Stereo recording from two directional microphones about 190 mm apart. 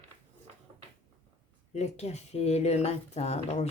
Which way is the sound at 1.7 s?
35° left (ahead or behind).